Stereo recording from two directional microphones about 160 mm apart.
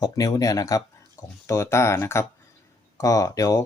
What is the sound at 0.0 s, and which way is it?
Speech, 20° left (ahead or behind).